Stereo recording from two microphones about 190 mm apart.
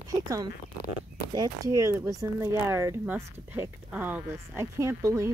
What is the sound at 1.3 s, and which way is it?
Speech, 20° right (ahead or behind).